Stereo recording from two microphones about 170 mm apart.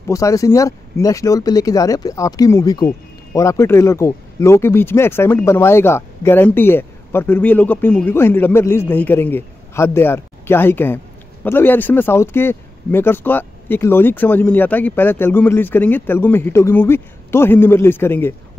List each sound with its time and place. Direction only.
0.1 s speech: 20° left (ahead or behind)